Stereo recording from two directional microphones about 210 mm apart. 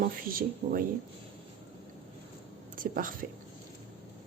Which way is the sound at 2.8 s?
40° right (ahead or behind).